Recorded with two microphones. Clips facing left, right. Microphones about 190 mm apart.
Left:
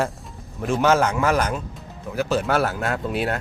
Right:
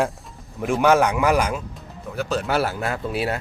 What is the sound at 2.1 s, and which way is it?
Speech, 5° left (ahead or behind).